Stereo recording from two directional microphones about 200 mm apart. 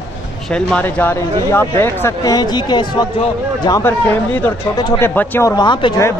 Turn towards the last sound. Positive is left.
turn(degrees=25)  # may be behind; listen again after turning